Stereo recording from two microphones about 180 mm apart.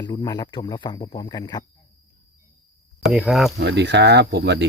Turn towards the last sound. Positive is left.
turn(degrees=-70)  # may be behind; listen again after turning